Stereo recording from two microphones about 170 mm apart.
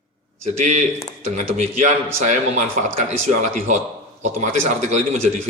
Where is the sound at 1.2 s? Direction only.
45° right (ahead or behind).